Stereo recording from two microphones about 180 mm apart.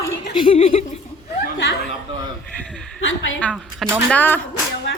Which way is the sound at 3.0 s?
90° left.